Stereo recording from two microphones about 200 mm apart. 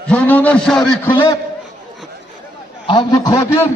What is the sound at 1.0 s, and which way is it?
Speech, 20° left (ahead or behind).